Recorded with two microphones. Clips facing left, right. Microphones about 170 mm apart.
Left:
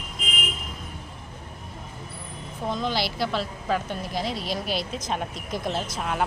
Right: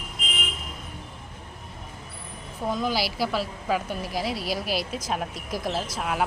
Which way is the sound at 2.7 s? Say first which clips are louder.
Right 1 dB; 10° right (ahead or behind).